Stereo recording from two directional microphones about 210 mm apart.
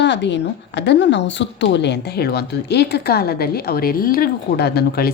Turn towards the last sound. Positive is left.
turn(degrees=50)  # may be behind; listen again after turning